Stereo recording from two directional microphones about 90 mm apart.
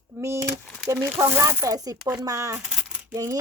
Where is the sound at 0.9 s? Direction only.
30° right (ahead or behind).